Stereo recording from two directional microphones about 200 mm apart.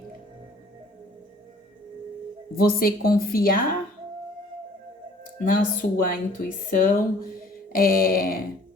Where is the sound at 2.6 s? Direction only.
45° left (ahead or behind).